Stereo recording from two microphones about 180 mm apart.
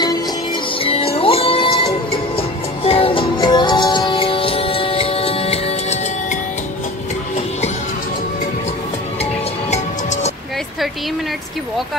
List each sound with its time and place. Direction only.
0.7 s music: 30° left (ahead or behind)
9.2 s music: 40° left (ahead or behind)